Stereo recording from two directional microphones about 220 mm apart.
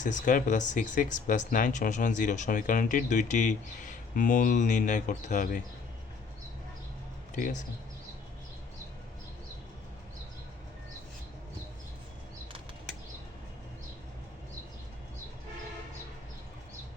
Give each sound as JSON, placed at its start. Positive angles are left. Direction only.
{"t": 0.0, "sound": "speech", "side_deg": 35}
{"t": 7.3, "sound": "speech", "side_deg": 35}